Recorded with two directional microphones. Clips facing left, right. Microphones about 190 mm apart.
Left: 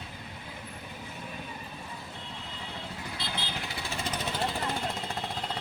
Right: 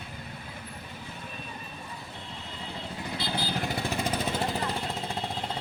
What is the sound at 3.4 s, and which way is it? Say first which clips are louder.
Vehicle: right 7 dB; 45° right (ahead or behind).